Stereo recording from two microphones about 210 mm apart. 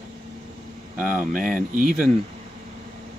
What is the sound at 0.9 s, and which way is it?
Speech, 5° right (ahead or behind).